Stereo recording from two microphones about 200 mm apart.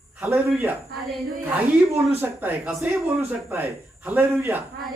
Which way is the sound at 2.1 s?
10° right (ahead or behind).